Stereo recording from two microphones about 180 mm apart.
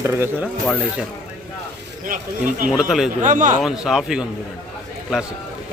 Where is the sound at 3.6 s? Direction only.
5° right (ahead or behind).